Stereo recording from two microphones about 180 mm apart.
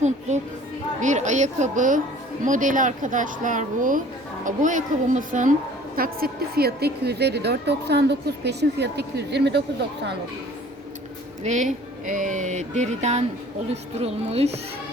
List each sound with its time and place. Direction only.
0.9 s speech: 40° right (ahead or behind)
6.0 s a woman's voice: 55° right (ahead or behind)
11.4 s speech: 40° right (ahead or behind)